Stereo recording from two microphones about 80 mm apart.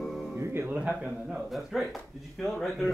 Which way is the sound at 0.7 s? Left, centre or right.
Centre.